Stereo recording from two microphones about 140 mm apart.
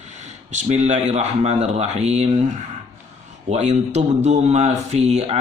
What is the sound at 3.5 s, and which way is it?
A man's voice, 55° right (ahead or behind).